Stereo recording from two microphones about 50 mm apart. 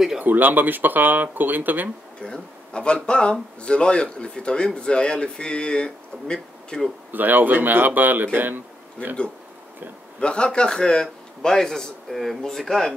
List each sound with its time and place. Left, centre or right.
0.2 s speech: right
2.1 s speech: centre
7.1 s speech: right
10.2 s a man's voice: centre